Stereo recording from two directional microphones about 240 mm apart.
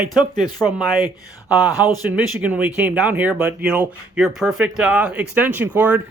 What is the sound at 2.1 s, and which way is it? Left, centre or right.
Speech, centre.